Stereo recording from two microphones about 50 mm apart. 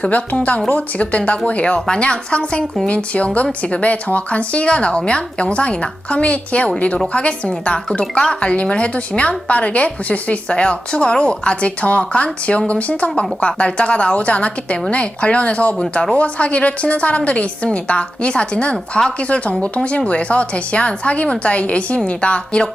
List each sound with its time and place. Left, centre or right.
0.0 s speech: left